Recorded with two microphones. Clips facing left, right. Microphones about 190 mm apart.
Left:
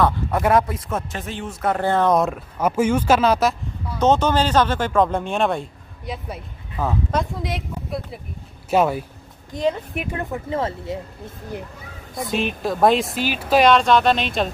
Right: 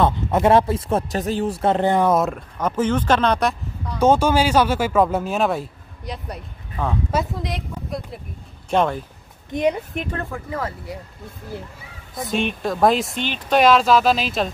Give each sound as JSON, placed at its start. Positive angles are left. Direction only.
{"t": 0.0, "sound": "speech", "side_deg": -25}
{"t": 2.1, "sound": "speech", "side_deg": 0}
{"t": 4.0, "sound": "speech", "side_deg": -10}
{"t": 9.5, "sound": "speech", "side_deg": -20}
{"t": 10.3, "sound": "speech", "side_deg": 25}
{"t": 12.2, "sound": "speech", "side_deg": 0}